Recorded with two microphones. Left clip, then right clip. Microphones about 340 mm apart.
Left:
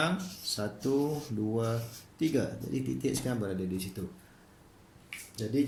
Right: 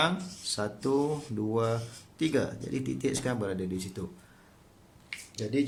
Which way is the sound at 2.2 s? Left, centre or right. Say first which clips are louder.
Right 2 dB; right.